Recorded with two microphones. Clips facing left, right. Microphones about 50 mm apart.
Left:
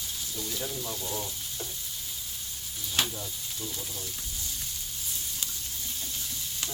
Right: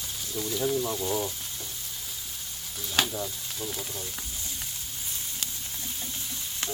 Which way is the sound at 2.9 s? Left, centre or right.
Right.